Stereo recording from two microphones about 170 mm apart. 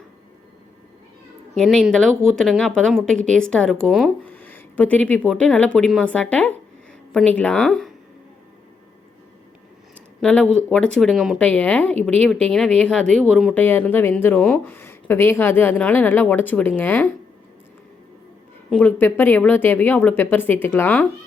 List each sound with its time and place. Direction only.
1.5 s speech: 5° left (ahead or behind)
9.9 s speech: 5° left (ahead or behind)
11.3 s speech: 10° left (ahead or behind)
18.7 s speech: 10° left (ahead or behind)